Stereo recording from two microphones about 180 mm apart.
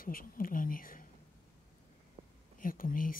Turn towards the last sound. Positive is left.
turn(degrees=50)  # may be behind; listen again after turning